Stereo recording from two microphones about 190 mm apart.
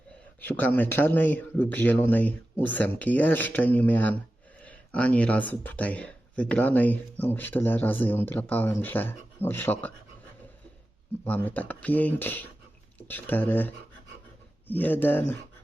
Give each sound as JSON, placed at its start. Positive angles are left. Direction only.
{"t": 0.4, "sound": "speech", "side_deg": 10}
{"t": 11.3, "sound": "speech", "side_deg": 10}